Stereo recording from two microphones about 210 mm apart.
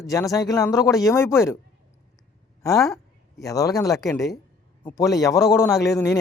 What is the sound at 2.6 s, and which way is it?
Speech, 15° left (ahead or behind).